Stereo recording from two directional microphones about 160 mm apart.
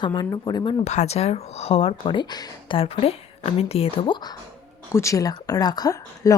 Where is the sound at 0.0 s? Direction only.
25° left (ahead or behind).